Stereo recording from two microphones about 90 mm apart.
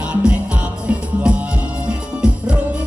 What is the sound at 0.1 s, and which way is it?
Music, 10° right (ahead or behind).